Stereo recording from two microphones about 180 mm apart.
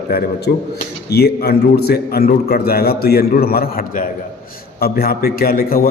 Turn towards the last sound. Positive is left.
turn(degrees=55)  # may be behind; listen again after turning